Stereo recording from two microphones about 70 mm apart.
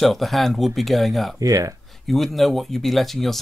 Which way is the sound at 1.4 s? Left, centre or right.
Right.